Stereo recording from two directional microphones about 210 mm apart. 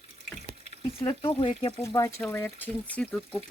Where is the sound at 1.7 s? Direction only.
15° left (ahead or behind).